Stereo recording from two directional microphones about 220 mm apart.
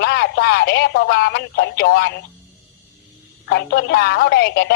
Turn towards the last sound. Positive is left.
turn(degrees=50)  # may be behind; listen again after turning